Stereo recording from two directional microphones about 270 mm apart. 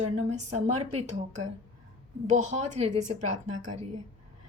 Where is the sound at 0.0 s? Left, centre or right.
Right.